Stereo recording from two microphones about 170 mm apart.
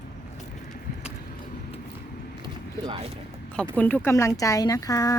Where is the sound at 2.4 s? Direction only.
30° right (ahead or behind).